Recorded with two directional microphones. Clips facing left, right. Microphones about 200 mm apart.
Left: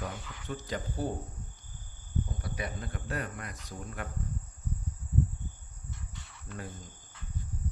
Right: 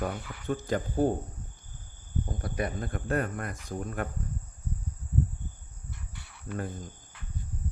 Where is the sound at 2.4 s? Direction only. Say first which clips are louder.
Right 6 dB; 50° right (ahead or behind).